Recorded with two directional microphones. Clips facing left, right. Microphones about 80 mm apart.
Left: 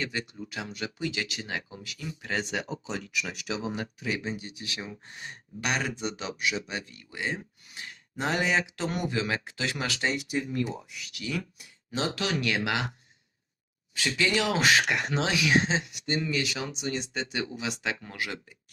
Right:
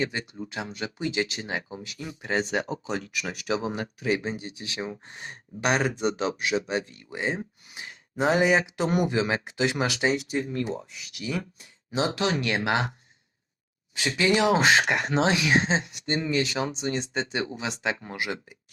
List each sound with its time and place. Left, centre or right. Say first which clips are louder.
0.0 s speech: right 4 dB; right
6.7 s speech: right 8 dB; right; by 10.2 s centre
10.5 s speech: right 1 dB; right
11.9 s speech: right 4 dB; right
14.2 s speech: right 5 dB; right